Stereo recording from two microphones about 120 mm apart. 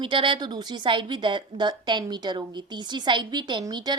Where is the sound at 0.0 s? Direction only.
45° right (ahead or behind).